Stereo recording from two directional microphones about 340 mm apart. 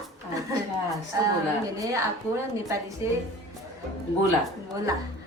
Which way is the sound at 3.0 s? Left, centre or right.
Centre.